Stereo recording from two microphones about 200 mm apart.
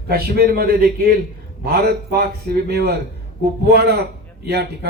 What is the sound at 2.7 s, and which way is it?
A man's voice, 55° right (ahead or behind).